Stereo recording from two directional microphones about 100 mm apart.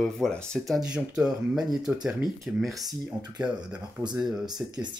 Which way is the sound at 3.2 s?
45° right (ahead or behind).